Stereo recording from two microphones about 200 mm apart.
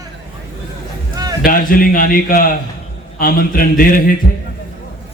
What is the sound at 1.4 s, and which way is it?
Speech, 45° left (ahead or behind).